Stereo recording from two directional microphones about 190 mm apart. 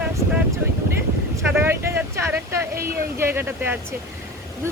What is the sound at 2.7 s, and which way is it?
Speech, 50° right (ahead or behind).